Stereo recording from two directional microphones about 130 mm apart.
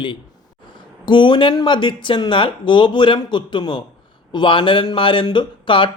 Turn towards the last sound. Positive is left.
turn(degrees=40)  # may be behind; listen again after turning